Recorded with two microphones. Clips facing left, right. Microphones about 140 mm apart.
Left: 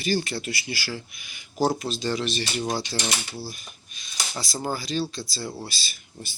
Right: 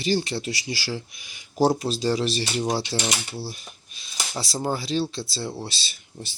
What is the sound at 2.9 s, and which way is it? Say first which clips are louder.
Speech: right 3 dB; 5° right (ahead or behind).